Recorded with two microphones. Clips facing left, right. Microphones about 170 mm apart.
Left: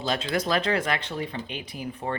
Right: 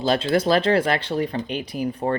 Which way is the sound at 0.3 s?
30° right (ahead or behind).